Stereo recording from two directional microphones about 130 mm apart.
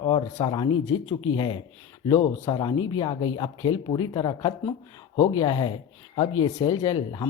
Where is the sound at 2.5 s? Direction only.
35° left (ahead or behind).